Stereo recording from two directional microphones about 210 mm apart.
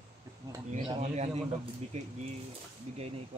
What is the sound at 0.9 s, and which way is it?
A man's voice, 30° right (ahead or behind).